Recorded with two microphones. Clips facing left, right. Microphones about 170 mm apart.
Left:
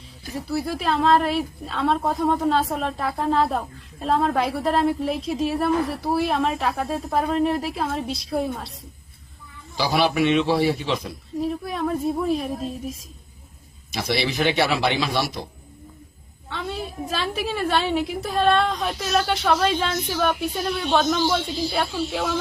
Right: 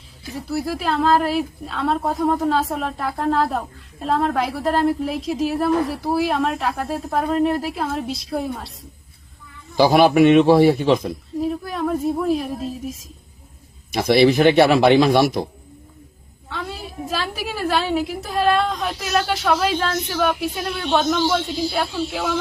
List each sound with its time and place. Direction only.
0.4 s a woman's voice: centre (ahead or behind)
9.7 s a man's voice: 50° right (ahead or behind)
11.3 s a woman's voice: centre (ahead or behind)
13.9 s a man's voice: 55° right (ahead or behind)
16.5 s a woman's voice: centre (ahead or behind)